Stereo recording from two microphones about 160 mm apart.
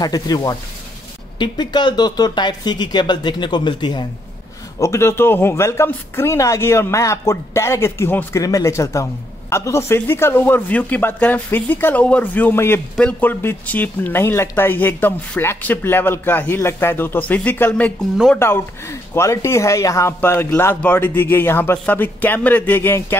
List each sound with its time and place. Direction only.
0.0 s speech: 25° left (ahead or behind)
18.1 s speech: centre (ahead or behind)
18.4 s speech: 15° left (ahead or behind)